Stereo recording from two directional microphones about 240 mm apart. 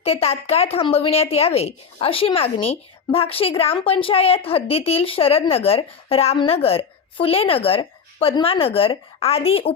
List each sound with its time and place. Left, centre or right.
0.0 s speech: left